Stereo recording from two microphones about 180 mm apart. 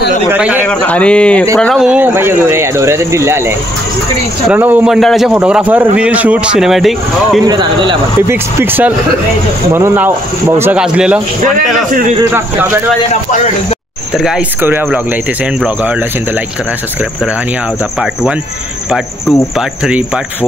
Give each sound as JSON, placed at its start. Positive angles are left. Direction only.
{"t": 0.3, "sound": "speech", "side_deg": -10}
{"t": 0.7, "sound": "a man's voice", "side_deg": 5}
{"t": 7.4, "sound": "speech", "side_deg": -25}
{"t": 8.3, "sound": "speech", "side_deg": -15}
{"t": 14.1, "sound": "speech", "side_deg": -5}
{"t": 19.8, "sound": "speech", "side_deg": -5}